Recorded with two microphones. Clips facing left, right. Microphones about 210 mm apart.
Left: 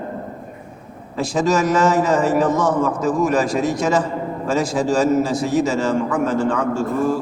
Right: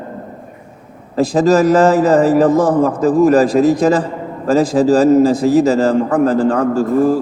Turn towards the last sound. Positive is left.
turn(degrees=-35)  # may be behind; listen again after turning